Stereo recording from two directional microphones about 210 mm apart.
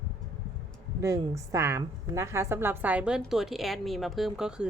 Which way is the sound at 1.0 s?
15° right (ahead or behind).